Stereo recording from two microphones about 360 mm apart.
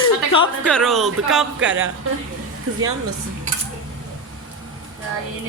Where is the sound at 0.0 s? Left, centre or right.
Centre.